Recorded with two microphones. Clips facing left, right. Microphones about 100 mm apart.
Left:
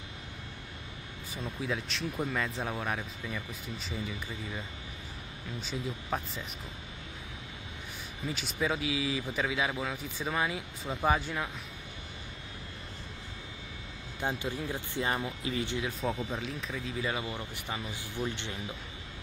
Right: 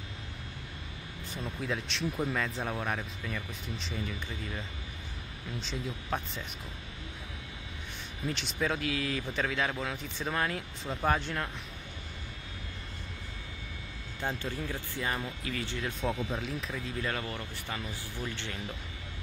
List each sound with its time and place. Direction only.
1.3 s speech: centre (ahead or behind)
8.3 s speech: 5° left (ahead or behind)
14.2 s speech: 15° left (ahead or behind)
15.8 s speech: centre (ahead or behind)
17.2 s speech: 15° left (ahead or behind)